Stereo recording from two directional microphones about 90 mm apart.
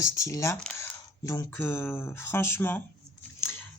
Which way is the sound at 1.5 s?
25° left (ahead or behind).